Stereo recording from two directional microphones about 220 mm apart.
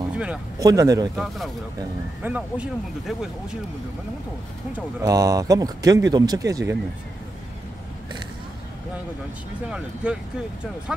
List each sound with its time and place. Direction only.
0.2 s speech: 5° right (ahead or behind)
0.7 s speech: 15° right (ahead or behind)
1.1 s speech: centre (ahead or behind)
4.7 s speech: 15° right (ahead or behind)
10.0 s speech: 5° right (ahead or behind)